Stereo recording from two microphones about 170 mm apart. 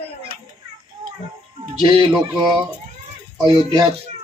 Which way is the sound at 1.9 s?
25° right (ahead or behind).